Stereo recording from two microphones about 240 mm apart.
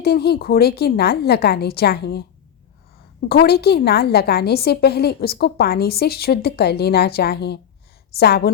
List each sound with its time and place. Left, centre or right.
0.0 s a woman's voice: left